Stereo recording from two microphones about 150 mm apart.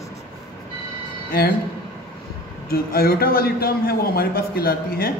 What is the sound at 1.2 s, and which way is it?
Speech, 90° left.